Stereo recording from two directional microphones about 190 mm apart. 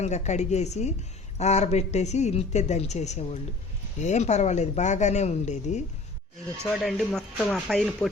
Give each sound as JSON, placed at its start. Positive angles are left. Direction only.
{"t": 0.0, "sound": "speech", "side_deg": 35}
{"t": 6.7, "sound": "speech", "side_deg": 5}